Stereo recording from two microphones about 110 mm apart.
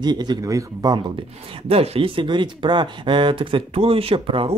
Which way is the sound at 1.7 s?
65° right (ahead or behind).